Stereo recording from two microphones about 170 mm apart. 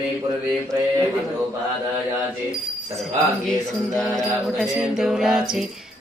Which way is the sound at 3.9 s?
Centre (ahead or behind).